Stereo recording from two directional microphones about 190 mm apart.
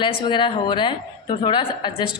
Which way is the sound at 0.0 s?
25° left (ahead or behind).